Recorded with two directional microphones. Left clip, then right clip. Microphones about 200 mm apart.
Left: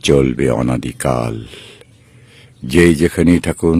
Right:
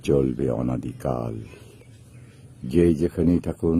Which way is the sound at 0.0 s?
15° left (ahead or behind).